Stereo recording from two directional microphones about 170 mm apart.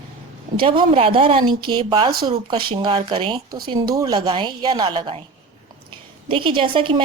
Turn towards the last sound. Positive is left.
turn(degrees=-30)  # may be behind; listen again after turning